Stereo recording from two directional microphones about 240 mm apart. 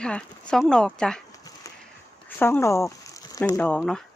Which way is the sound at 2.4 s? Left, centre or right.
Centre.